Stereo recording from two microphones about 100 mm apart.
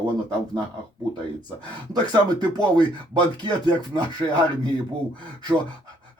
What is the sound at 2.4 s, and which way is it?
Speech, 45° right (ahead or behind).